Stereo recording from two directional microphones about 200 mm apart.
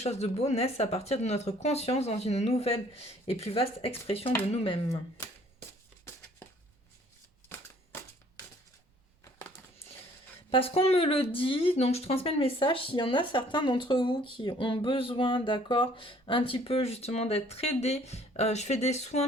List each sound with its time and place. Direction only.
0.0 s speech: 35° left (ahead or behind)
6.1 s a sound: 15° left (ahead or behind)
10.5 s speech: 30° left (ahead or behind)